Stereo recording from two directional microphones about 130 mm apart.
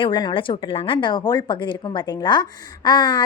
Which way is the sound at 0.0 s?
35° left (ahead or behind).